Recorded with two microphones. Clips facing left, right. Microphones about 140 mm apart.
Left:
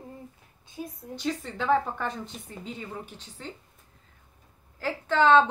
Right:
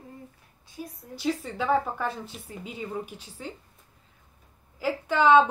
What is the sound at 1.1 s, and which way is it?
A woman's voice, 10° right (ahead or behind).